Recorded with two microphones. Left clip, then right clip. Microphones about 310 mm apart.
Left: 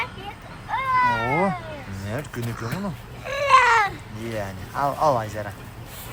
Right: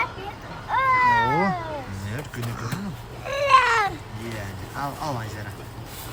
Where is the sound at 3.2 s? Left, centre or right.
Centre.